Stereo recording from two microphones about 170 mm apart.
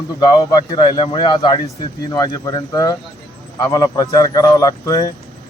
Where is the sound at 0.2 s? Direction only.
25° left (ahead or behind).